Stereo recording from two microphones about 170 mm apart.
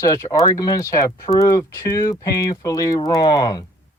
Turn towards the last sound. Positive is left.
turn(degrees=25)  # may be behind; listen again after turning